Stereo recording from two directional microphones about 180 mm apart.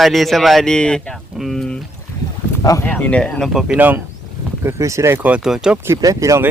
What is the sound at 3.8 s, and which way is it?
Speech, 10° right (ahead or behind).